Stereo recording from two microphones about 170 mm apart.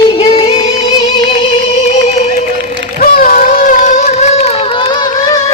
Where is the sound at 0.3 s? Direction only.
25° left (ahead or behind).